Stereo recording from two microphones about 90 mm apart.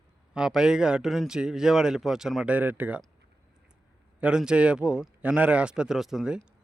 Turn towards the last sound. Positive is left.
turn(degrees=-10)  # may be behind; listen again after turning